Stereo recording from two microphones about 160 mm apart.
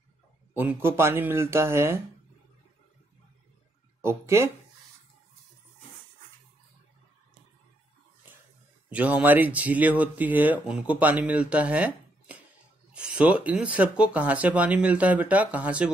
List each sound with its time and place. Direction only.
0.6 s speech: 15° right (ahead or behind)
4.0 s speech: 15° right (ahead or behind)
8.8 s speech: 10° right (ahead or behind)